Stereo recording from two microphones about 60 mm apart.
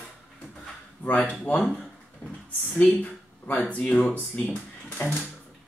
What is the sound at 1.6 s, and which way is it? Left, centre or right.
Speech, centre.